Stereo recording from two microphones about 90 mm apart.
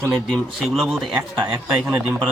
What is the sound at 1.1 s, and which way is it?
Speech, 15° right (ahead or behind).